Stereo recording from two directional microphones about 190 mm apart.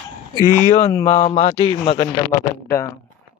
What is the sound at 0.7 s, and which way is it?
Speech, 35° left (ahead or behind).